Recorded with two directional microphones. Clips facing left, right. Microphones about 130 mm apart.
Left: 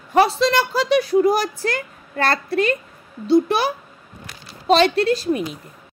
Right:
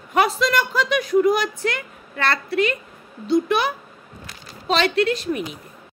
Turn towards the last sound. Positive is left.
turn(degrees=35)  # may be behind; listen again after turning